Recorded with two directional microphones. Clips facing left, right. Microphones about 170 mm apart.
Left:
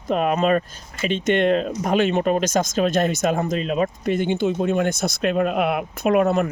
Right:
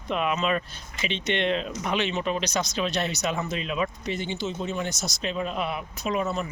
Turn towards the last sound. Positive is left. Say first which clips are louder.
# left 9 dB
turn(degrees=60)  # may be behind; listen again after turning